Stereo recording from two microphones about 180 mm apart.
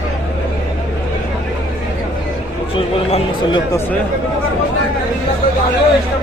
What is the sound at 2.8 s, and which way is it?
Speech, 30° left (ahead or behind).